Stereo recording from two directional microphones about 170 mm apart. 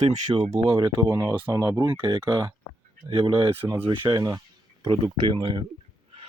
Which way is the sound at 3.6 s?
10° right (ahead or behind).